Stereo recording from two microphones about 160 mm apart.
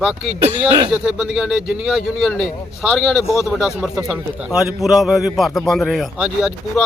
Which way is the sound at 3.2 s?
15° left (ahead or behind).